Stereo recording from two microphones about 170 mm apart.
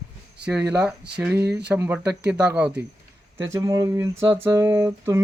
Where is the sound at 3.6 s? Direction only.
20° right (ahead or behind).